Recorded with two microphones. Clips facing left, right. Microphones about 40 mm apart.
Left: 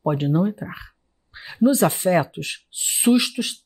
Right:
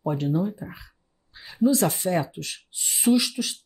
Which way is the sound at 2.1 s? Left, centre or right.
Left.